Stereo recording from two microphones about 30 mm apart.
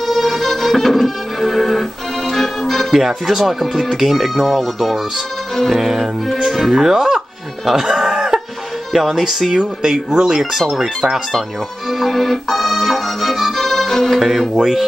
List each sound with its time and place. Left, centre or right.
0.0 s music: centre
2.9 s speech: centre
7.6 s a sound: centre
8.9 s speech: centre
11.9 s music: centre
14.5 s speech: centre